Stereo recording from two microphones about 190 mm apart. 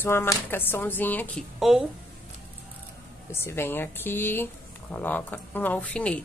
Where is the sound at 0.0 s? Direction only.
10° left (ahead or behind).